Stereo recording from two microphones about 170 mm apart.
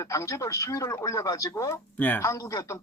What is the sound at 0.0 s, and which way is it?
Speech, 15° left (ahead or behind).